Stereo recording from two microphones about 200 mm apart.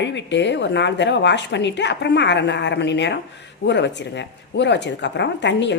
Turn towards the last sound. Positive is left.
turn(degrees=60)  # may be behind; listen again after turning